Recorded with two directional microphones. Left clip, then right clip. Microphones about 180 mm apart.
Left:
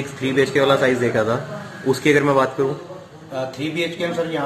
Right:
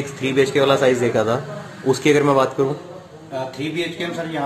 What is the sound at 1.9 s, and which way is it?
A man's voice, 15° right (ahead or behind).